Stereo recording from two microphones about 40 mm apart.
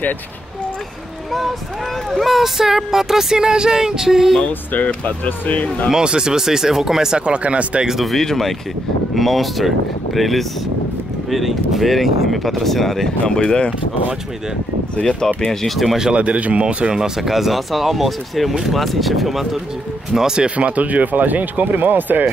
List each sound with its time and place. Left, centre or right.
2.2 s speech: centre
4.5 s speech: left
5.9 s speech: centre
8.0 s speech: centre
13.3 s speech: left
15.0 s speech: centre
15.6 s speech: centre
16.2 s speech: right
17.2 s speech: centre
20.2 s speech: centre
20.4 s speech: right